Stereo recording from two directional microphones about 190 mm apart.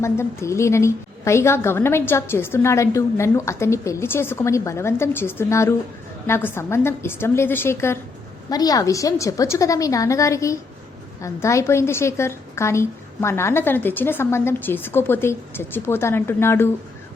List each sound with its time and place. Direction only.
0.0 s a woman's voice: 15° left (ahead or behind)